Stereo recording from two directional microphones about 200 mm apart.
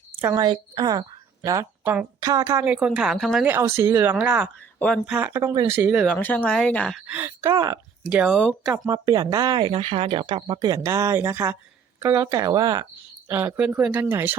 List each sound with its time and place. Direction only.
0.2 s a woman's voice: 10° right (ahead or behind)
0.4 s speech: 25° right (ahead or behind); by 3.5 s centre (ahead or behind)
3.5 s speech: 15° right (ahead or behind)
6.1 s speech: 10° left (ahead or behind)
7.1 s speech: 10° right (ahead or behind)
7.4 s speech: 20° right (ahead or behind)
8.1 s speech: 5° right (ahead or behind)
8.9 s speech: 20° right (ahead or behind)